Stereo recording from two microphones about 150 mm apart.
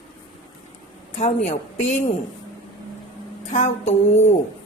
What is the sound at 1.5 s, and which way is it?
Speech, 50° left (ahead or behind).